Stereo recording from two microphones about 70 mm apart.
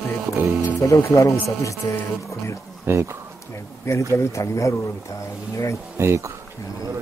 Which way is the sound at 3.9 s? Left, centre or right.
Left.